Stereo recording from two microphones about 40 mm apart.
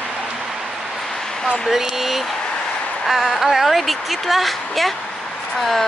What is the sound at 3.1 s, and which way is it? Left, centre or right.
Speech, centre.